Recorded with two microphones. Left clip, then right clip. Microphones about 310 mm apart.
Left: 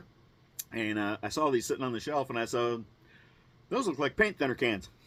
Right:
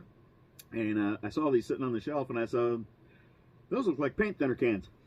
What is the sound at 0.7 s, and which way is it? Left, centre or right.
Speech, left.